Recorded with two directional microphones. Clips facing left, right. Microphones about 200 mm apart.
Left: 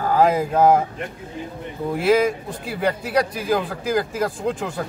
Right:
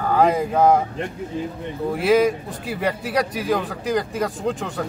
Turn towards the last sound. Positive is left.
turn(degrees=0)  # may be behind; listen again after turning